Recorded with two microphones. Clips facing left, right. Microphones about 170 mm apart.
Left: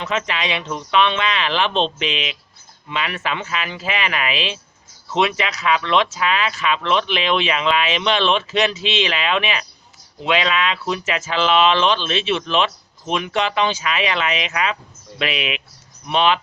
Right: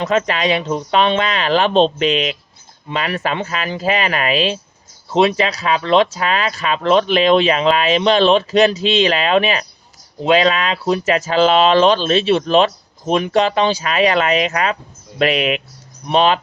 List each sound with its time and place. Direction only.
0.0 s speech: 40° right (ahead or behind)